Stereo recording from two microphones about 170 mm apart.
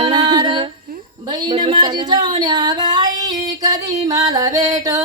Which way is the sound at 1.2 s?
25° right (ahead or behind).